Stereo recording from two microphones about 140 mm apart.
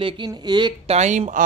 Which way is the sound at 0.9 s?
55° right (ahead or behind).